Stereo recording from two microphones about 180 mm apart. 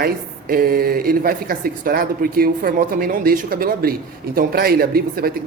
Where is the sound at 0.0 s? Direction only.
55° right (ahead or behind).